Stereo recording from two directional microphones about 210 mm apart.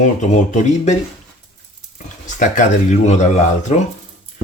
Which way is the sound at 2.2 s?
35° left (ahead or behind).